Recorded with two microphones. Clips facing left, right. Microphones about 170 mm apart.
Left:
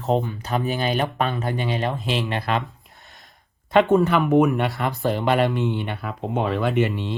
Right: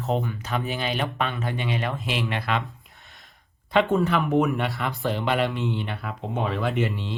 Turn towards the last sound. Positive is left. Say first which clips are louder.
# left 4 dB
turn(degrees=60)  # may be behind; listen again after turning